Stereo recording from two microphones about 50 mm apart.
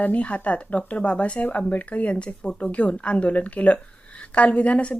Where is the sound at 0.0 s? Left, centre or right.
Left.